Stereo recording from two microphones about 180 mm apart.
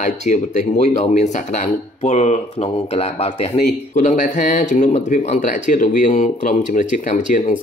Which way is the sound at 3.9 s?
45° left (ahead or behind).